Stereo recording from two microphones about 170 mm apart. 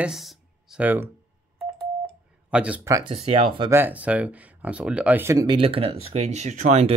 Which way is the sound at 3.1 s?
35° right (ahead or behind).